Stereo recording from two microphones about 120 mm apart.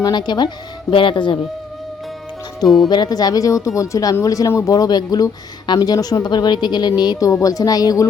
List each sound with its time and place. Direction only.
0.0 s speech: 35° left (ahead or behind)
2.6 s speech: centre (ahead or behind)
2.9 s speech: 35° left (ahead or behind)